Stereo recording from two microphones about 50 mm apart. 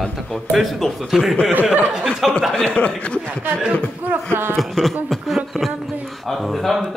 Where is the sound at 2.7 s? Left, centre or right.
Left.